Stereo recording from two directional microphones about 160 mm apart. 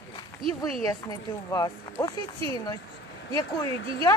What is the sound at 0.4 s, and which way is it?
Speech, 35° right (ahead or behind).